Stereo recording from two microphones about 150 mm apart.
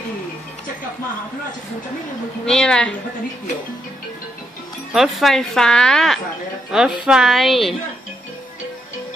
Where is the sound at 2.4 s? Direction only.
5° left (ahead or behind).